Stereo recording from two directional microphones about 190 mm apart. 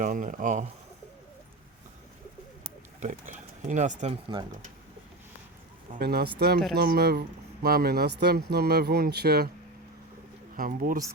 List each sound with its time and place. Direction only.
0.0 s speech: 45° right (ahead or behind)
3.0 s speech: 40° right (ahead or behind)
5.9 s speech: 55° right (ahead or behind)
10.6 s speech: 45° right (ahead or behind)